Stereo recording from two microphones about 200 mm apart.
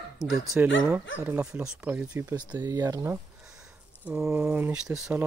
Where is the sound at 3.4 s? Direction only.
5° right (ahead or behind).